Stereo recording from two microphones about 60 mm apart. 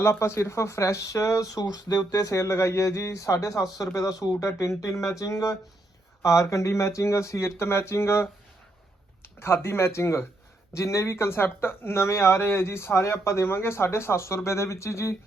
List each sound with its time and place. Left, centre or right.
0.0 s speech: left
4.8 s a sound: left
6.2 s speech: left